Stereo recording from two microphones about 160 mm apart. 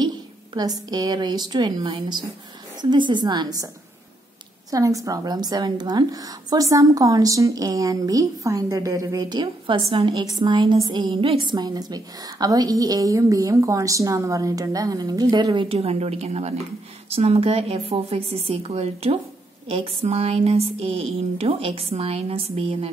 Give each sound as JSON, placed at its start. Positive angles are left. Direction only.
{"t": 0.6, "sound": "a woman's voice", "side_deg": -25}
{"t": 4.6, "sound": "a woman's voice", "side_deg": -20}